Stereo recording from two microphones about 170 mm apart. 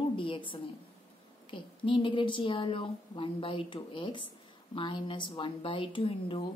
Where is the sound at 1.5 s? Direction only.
30° left (ahead or behind).